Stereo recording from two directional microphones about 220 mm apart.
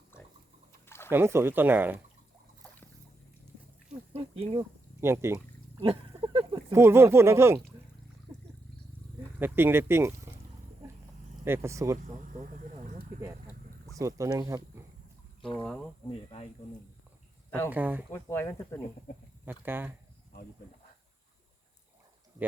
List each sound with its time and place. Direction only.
0.9 s liquid: 10° left (ahead or behind)
1.1 s speech: 10° right (ahead or behind)
4.9 s a sound: 10° right (ahead or behind)
5.8 s speech: 25° right (ahead or behind)
9.4 s speech: 10° right (ahead or behind)
11.4 s speech: 10° right (ahead or behind)
12.1 s a sound: 35° right (ahead or behind)
14.0 s speech: 15° right (ahead or behind)
15.4 s speech: 20° left (ahead or behind)
15.6 s speech: 5° left (ahead or behind)
17.7 s speech: 10° right (ahead or behind)
18.1 s speech: 10° left (ahead or behind)
19.5 s speech: 10° right (ahead or behind)